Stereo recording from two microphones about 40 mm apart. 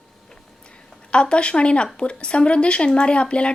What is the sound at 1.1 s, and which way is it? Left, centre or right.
Speech, left.